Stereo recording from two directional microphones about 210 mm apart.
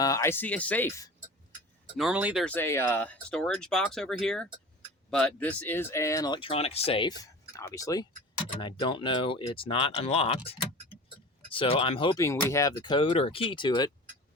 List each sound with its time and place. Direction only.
0.0 s speech: 15° left (ahead or behind)
2.0 s speech: 5° right (ahead or behind)
2.4 s speech: 10° left (ahead or behind)